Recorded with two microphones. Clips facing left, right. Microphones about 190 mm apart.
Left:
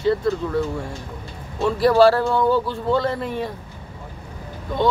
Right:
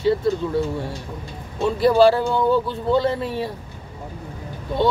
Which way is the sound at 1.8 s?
20° right (ahead or behind).